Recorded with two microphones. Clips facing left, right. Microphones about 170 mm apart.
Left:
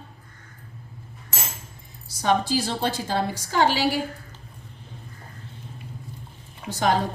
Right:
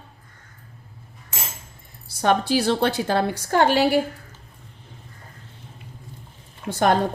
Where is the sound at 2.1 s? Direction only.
60° right (ahead or behind).